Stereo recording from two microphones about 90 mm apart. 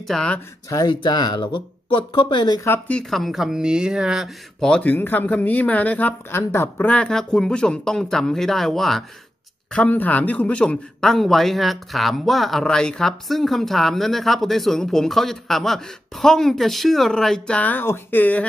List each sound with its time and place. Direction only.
0.0 s speech: 5° left (ahead or behind)
0.7 s speech: 45° left (ahead or behind)
2.9 s a man's voice: 5° left (ahead or behind)
4.6 s speech: 10° left (ahead or behind)
6.3 s speech: 30° left (ahead or behind)
6.9 s speech: 10° left (ahead or behind)
9.7 s a man's voice: 15° left (ahead or behind)
17.6 s speech: 20° left (ahead or behind)